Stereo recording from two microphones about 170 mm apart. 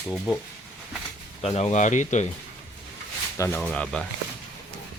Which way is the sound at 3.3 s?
15° left (ahead or behind).